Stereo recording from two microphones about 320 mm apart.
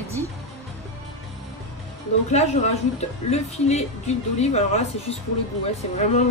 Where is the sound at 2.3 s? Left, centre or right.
Left.